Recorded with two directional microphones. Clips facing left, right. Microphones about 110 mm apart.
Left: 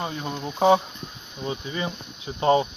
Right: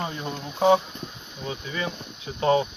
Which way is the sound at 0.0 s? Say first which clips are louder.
Left 1 dB; 10° left (ahead or behind).